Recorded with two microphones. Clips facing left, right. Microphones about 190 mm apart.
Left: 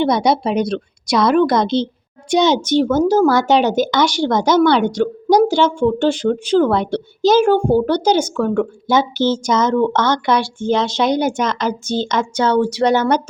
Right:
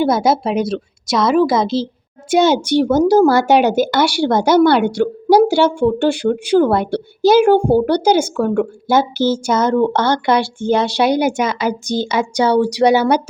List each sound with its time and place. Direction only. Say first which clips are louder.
0.0 s a woman's voice: right 1 dB; 5° right (ahead or behind)